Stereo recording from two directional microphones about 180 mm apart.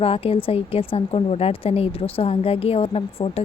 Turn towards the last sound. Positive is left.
turn(degrees=30)  # may be behind; listen again after turning